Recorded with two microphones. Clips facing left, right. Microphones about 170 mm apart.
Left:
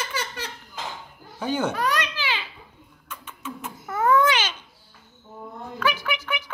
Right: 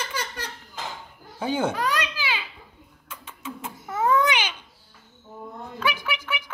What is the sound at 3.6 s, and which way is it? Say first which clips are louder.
Baby cry: left 1 dB; 20° right (ahead or behind).